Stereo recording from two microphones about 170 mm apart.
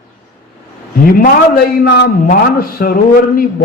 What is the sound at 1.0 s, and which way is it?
A man's voice, 60° left (ahead or behind).